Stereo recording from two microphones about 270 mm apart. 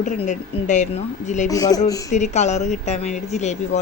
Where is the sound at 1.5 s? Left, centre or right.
Centre.